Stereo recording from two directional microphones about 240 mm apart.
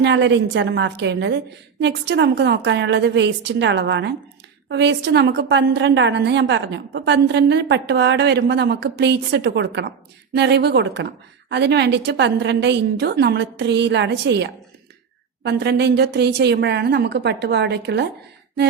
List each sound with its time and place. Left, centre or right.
0.0 s a woman's voice: right